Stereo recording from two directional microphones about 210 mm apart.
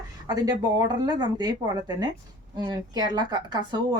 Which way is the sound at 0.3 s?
20° right (ahead or behind).